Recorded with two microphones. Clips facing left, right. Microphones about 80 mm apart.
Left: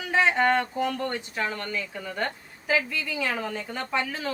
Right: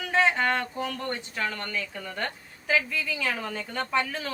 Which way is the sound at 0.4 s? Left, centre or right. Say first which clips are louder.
Left 4 dB; centre.